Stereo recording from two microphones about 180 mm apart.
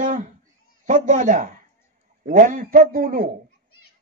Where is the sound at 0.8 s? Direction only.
45° right (ahead or behind).